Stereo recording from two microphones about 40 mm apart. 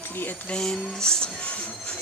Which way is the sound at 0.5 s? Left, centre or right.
Centre.